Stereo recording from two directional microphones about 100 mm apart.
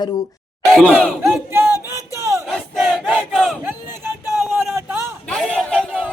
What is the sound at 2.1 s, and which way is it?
Battle cry, 30° right (ahead or behind).